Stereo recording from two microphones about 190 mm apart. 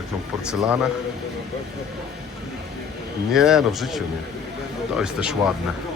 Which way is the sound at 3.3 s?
Centre (ahead or behind).